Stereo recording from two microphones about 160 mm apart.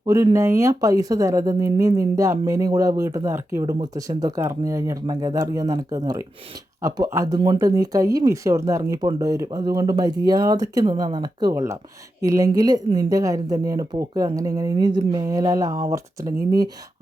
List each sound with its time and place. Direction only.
0.0 s speech: 20° right (ahead or behind)